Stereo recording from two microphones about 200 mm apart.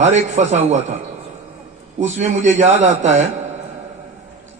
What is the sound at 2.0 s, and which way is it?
A man's voice, 35° right (ahead or behind).